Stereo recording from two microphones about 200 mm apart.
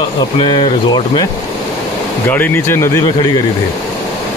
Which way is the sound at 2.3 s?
10° left (ahead or behind).